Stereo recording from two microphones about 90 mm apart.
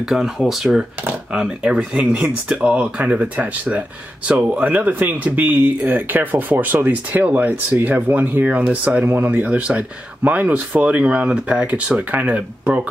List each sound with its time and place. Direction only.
0.0 s speech: 5° right (ahead or behind)